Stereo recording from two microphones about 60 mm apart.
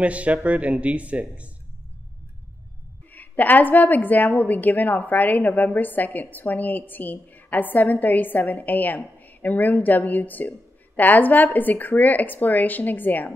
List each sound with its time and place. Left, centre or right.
0.0 s speech: right
3.1 s a woman's voice: left